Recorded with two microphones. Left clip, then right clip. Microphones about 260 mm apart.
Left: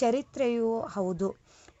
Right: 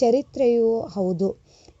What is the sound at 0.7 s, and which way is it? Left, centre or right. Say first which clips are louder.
Speech: right 7 dB; centre.